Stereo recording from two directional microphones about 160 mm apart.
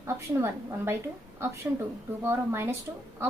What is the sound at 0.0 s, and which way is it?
A woman's voice, 15° right (ahead or behind).